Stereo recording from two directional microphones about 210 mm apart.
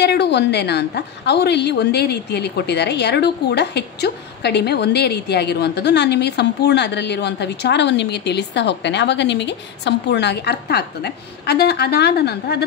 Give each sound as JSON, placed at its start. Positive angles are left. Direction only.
{"t": 0.0, "sound": "a woman's voice", "side_deg": 55}